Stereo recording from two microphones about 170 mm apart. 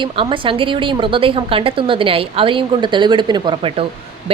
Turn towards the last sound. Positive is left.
turn(degrees=-30)  # may be behind; listen again after turning